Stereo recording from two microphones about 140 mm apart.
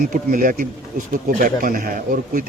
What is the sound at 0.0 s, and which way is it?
Speech, 80° right.